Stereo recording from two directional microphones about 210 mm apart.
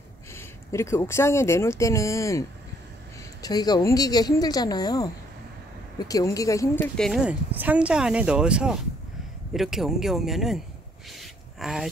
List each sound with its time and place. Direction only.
0.3 s speech: 10° left (ahead or behind)
3.4 s a woman's voice: 20° left (ahead or behind)
7.1 s speech: 5° right (ahead or behind)
11.1 s gasp: centre (ahead or behind)